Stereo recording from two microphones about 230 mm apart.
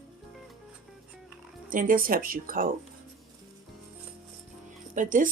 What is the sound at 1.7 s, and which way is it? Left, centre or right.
Speech, right.